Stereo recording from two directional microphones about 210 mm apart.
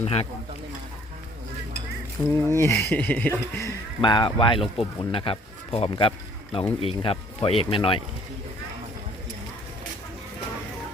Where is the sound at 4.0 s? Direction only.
20° left (ahead or behind).